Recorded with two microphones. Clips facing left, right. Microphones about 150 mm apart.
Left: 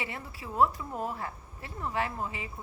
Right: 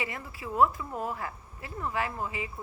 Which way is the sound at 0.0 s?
30° left (ahead or behind).